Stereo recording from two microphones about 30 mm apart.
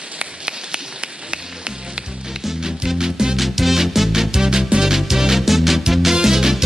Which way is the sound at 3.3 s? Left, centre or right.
Centre.